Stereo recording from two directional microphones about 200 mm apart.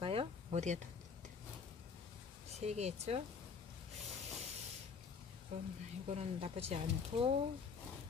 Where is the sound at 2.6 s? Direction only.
35° right (ahead or behind).